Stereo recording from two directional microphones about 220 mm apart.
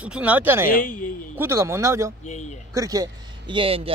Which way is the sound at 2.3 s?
30° left (ahead or behind).